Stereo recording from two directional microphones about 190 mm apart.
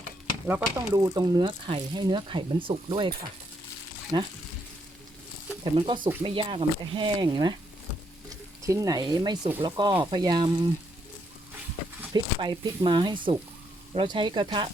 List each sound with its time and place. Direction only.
0.8 s speech: 20° right (ahead or behind)
4.1 s speech: 25° right (ahead or behind)
5.6 s speech: 25° right (ahead or behind)
12.1 s speech: 25° right (ahead or behind)